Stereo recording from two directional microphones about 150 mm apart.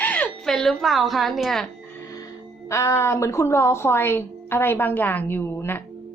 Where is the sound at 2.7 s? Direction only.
20° left (ahead or behind).